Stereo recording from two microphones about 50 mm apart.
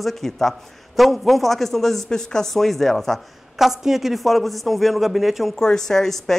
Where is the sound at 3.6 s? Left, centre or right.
Centre.